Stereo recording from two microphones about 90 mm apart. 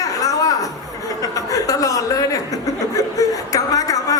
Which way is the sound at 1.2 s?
40° left (ahead or behind).